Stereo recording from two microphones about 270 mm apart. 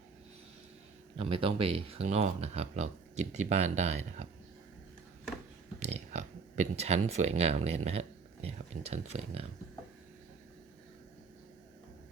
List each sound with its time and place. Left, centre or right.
1.1 s a man's voice: centre
5.8 s a sound: right
7.9 s speech: right